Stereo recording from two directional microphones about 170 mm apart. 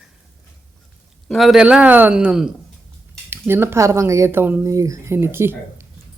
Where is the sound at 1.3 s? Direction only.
Centre (ahead or behind).